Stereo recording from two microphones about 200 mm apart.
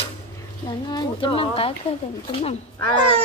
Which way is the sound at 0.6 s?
20° left (ahead or behind).